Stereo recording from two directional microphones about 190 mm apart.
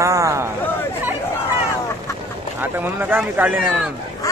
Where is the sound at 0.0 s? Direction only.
15° right (ahead or behind).